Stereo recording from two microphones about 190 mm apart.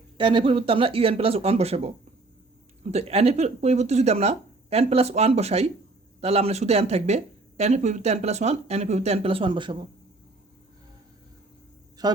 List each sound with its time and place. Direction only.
0.2 s speech: 25° right (ahead or behind)
2.9 s speech: 35° right (ahead or behind)
12.0 s a man's voice: 20° right (ahead or behind)